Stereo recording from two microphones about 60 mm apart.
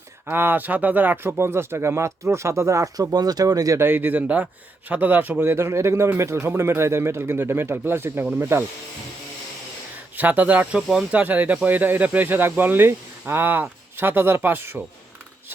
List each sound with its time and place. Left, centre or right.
0.3 s speech: right
3.8 s speech: right
5.5 s speech: right
10.2 s speech: right